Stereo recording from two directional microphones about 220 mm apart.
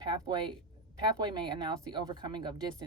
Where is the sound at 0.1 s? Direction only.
20° right (ahead or behind).